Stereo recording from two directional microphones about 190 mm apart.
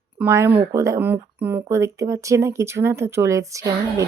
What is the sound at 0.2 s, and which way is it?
Speech, 10° right (ahead or behind).